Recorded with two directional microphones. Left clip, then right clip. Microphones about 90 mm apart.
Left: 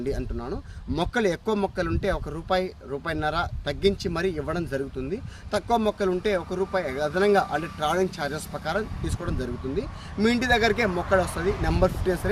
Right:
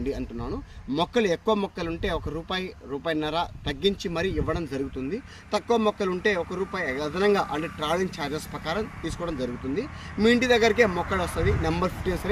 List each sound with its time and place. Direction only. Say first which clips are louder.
0.9 s speech: right 1 dB; 50° left (ahead or behind)